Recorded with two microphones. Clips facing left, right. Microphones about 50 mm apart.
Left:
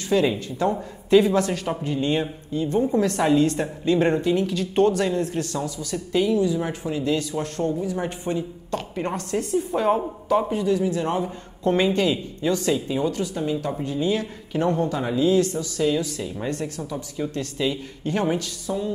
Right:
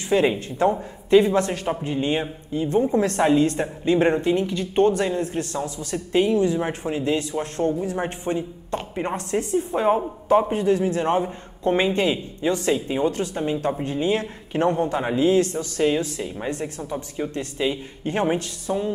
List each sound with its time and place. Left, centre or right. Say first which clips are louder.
0.1 s a woman's voice: right 1 dB; right
10.5 s a man's voice: right 2 dB; right
16.2 s speech: even; right